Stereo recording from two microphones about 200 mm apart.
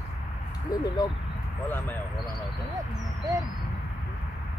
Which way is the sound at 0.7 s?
20° left (ahead or behind).